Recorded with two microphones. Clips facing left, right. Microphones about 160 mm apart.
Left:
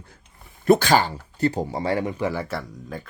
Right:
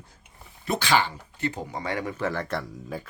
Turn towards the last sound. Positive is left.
turn(degrees=0)  # may be behind; listen again after turning